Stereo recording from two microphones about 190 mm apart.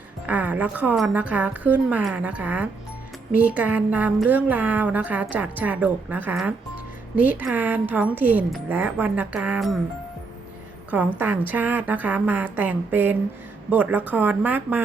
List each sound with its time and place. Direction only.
0.3 s a woman's voice: 10° right (ahead or behind)
10.9 s a woman's voice: 10° right (ahead or behind)